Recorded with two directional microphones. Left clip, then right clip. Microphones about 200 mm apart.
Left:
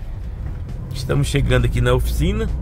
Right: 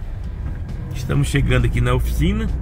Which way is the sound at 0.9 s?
10° left (ahead or behind).